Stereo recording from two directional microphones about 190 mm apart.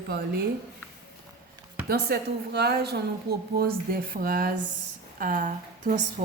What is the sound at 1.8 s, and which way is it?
A woman's voice, 55° right (ahead or behind).